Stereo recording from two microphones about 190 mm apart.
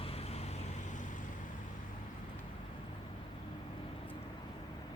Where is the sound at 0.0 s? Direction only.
30° left (ahead or behind).